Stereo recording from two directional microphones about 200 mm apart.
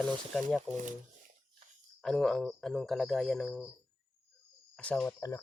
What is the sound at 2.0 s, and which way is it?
Speech, centre (ahead or behind).